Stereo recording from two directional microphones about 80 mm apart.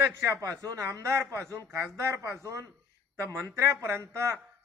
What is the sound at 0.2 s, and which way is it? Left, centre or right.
Speech, right.